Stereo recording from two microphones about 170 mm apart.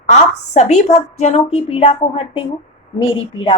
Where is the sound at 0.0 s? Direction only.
40° left (ahead or behind).